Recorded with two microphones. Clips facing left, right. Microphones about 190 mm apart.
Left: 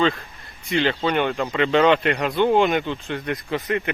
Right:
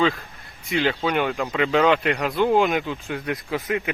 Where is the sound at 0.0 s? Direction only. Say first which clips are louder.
Left 1 dB; centre (ahead or behind).